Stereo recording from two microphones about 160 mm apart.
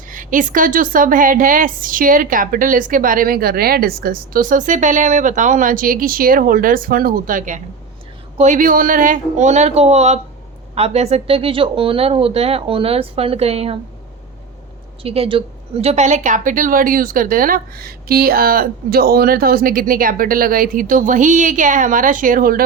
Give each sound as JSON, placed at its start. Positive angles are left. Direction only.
{"t": 0.1, "sound": "a woman's voice", "side_deg": -55}
{"t": 15.0, "sound": "a woman's voice", "side_deg": -35}